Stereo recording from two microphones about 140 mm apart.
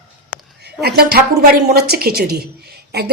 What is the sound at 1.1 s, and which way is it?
Speech, 90° right.